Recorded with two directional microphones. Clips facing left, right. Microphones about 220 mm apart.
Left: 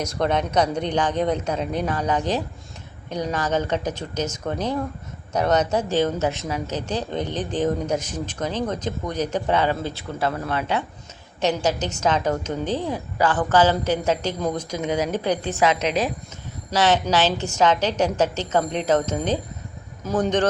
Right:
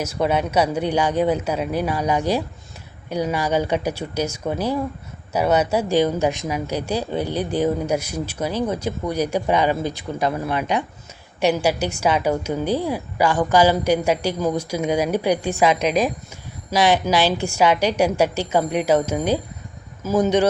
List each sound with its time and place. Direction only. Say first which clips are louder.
0.0 s a woman's voice: right 2 dB; 5° right (ahead or behind)